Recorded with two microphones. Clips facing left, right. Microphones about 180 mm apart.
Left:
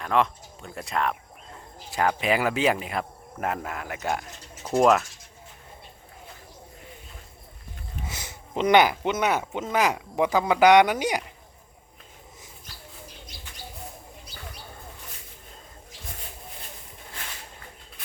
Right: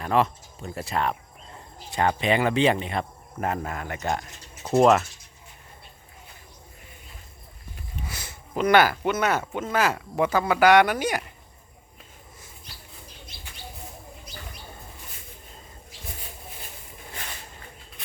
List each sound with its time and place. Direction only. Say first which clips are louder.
0.0 s speech: right 1 dB; 5° right (ahead or behind)
4.6 s speech: right 2 dB; 5° right (ahead or behind)
8.0 s speech: left 1 dB; 20° left (ahead or behind)